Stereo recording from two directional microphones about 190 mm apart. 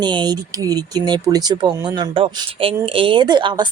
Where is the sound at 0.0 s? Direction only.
25° right (ahead or behind).